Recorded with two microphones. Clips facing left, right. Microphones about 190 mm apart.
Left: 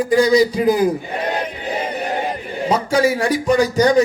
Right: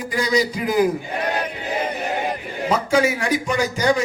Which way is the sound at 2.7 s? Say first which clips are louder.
Left 2 dB; 35° left (ahead or behind).